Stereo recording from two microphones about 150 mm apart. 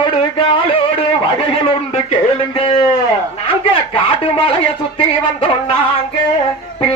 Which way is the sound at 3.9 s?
35° left (ahead or behind).